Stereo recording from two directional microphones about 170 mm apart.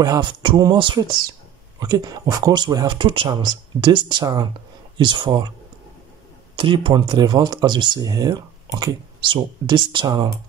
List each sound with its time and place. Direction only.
0.0 s speech: 25° right (ahead or behind)
6.5 s speech: 30° right (ahead or behind)